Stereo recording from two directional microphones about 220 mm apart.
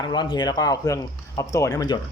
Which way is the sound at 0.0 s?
20° left (ahead or behind).